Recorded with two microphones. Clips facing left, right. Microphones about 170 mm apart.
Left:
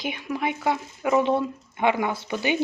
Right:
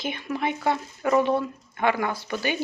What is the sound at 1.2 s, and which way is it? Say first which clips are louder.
Speech: left 1 dB; 20° left (ahead or behind).